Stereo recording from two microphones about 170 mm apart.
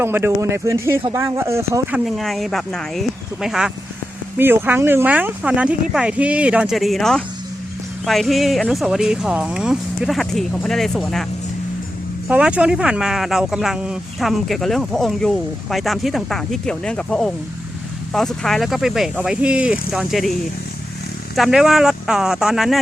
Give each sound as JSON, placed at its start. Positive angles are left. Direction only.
{"t": 0.0, "sound": "speech", "side_deg": -15}
{"t": 2.0, "sound": "speech", "side_deg": 0}
{"t": 4.4, "sound": "speech", "side_deg": -10}
{"t": 12.3, "sound": "speech", "side_deg": -5}
{"t": 21.3, "sound": "speech", "side_deg": 0}